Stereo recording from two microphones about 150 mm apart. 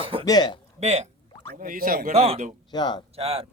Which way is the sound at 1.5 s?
65° right (ahead or behind).